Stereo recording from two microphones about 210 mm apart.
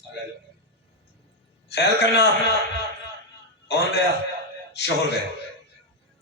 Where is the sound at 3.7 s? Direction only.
50° left (ahead or behind).